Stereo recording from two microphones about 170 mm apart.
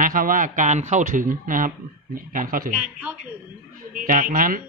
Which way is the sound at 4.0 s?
50° right (ahead or behind).